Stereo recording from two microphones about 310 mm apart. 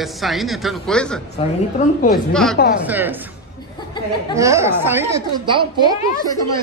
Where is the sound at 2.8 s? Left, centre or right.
Centre.